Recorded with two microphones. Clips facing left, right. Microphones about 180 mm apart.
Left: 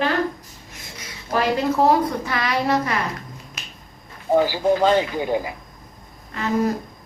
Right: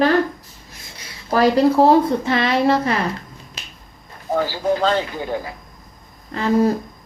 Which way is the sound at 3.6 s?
30° right (ahead or behind).